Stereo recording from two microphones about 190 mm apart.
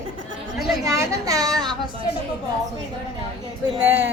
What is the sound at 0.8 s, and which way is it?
Speech, 20° right (ahead or behind).